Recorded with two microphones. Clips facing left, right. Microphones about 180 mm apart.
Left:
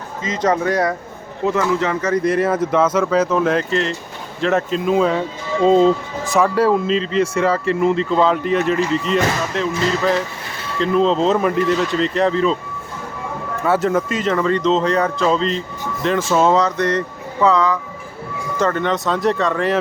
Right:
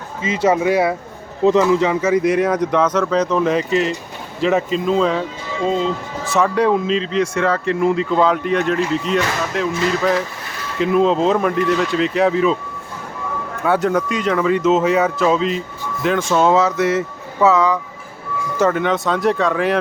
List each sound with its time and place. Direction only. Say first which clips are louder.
0.2 s speech: right 2 dB; 10° right (ahead or behind)
1.5 s speech: right 4 dB; 20° right (ahead or behind); by 5.2 s 5° left (ahead or behind)
5.6 s speech: left 7 dB; 40° left (ahead or behind)
6.4 s speech: even; 5° left (ahead or behind)
13.6 s speech: even; centre (ahead or behind)